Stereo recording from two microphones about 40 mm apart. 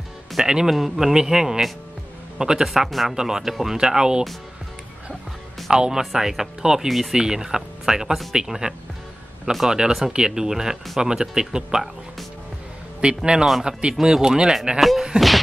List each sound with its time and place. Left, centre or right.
0.4 s speech: centre
2.6 s speech: centre
3.2 s a man's voice: centre
5.7 s speech: centre
7.2 s speech: centre
13.0 s a man's voice: right
14.8 s speech: centre